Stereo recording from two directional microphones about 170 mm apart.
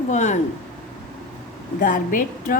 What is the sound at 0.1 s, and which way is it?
Speech, 45° left (ahead or behind).